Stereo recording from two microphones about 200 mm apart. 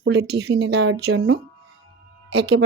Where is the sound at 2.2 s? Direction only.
60° right (ahead or behind).